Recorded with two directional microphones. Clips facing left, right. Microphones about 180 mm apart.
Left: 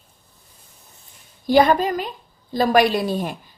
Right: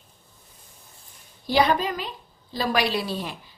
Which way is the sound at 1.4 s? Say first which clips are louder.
Left 6 dB; 50° left (ahead or behind).